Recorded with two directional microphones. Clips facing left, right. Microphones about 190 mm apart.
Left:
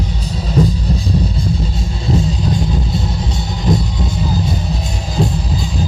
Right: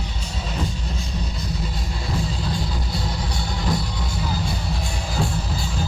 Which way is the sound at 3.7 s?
20° left (ahead or behind).